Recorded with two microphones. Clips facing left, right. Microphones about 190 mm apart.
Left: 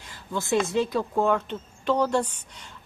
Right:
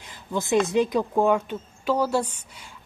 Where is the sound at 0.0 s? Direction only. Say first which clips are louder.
Right 3 dB; 20° right (ahead or behind).